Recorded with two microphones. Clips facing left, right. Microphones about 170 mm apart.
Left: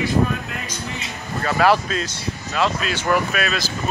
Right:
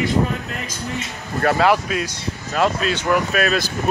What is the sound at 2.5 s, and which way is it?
Speech, 45° right (ahead or behind).